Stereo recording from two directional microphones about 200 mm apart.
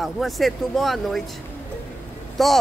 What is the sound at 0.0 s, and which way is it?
Speech, centre (ahead or behind).